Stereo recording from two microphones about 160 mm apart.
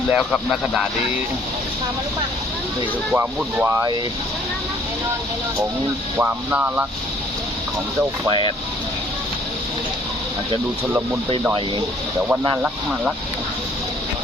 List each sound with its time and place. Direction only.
0.1 s speech: 5° right (ahead or behind)
3.1 s speech: 15° right (ahead or behind)
6.1 s speech: 10° right (ahead or behind)
12.3 s speech: 10° right (ahead or behind)